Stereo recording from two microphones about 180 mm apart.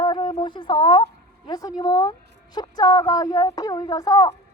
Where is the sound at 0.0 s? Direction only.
25° left (ahead or behind).